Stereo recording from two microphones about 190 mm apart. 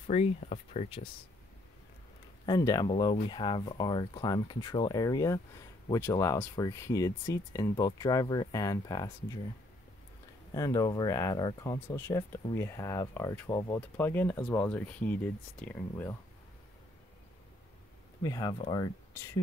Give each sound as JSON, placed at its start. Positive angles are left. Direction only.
{"t": 0.0, "sound": "speech", "side_deg": 40}
{"t": 2.4, "sound": "speech", "side_deg": 20}
{"t": 10.5, "sound": "speech", "side_deg": 20}
{"t": 18.2, "sound": "speech", "side_deg": 20}